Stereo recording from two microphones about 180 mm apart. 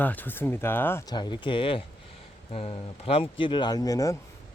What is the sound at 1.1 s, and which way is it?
Speech, 25° left (ahead or behind).